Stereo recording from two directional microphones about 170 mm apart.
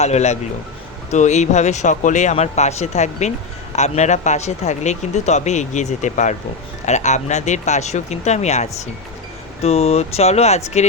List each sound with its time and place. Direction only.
0.0 s speech: 40° left (ahead or behind)